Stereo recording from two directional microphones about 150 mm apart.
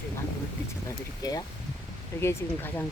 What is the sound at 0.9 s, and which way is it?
Speech, 25° left (ahead or behind).